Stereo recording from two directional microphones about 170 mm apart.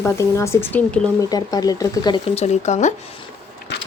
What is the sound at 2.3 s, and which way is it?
Speech, 40° left (ahead or behind).